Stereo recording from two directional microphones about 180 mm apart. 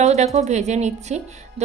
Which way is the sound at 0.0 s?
40° right (ahead or behind).